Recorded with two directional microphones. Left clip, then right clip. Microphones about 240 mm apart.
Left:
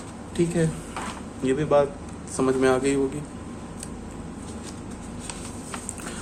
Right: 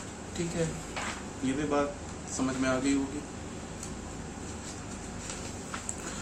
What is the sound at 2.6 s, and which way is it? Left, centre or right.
Speech, left.